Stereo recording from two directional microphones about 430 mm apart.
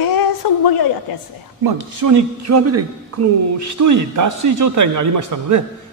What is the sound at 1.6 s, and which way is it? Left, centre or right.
A man's voice, right.